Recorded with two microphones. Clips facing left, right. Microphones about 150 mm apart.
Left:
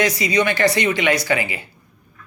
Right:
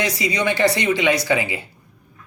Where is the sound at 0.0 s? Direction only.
25° right (ahead or behind).